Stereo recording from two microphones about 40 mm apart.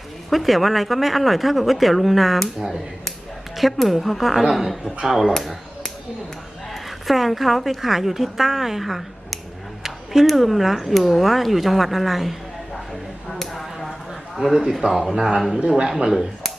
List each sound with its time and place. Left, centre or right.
0.3 s a man's voice: centre
5.3 s a sound: centre
7.1 s speech: centre
13.4 s a sound: centre
14.3 s a man's voice: centre
15.4 s speech: centre
15.8 s a man's voice: centre